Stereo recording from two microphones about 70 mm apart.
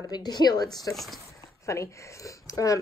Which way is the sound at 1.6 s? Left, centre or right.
Left.